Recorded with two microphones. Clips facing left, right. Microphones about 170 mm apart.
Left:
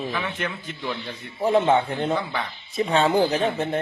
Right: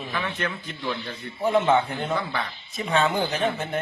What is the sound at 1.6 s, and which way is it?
Speech, 30° left (ahead or behind).